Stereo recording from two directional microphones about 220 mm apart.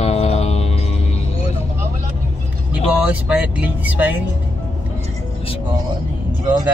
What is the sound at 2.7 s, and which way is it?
Speech, 5° right (ahead or behind).